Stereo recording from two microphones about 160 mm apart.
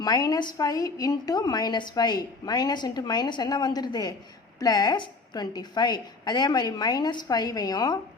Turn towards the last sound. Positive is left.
turn(degrees=25)  # may be behind; listen again after turning